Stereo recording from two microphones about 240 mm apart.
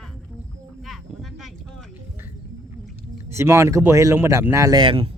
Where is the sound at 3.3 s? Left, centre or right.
Centre.